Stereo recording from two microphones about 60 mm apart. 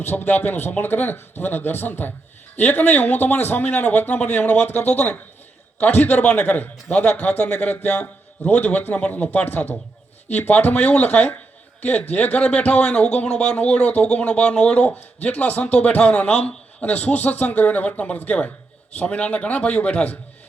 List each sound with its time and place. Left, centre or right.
0.0 s speech: left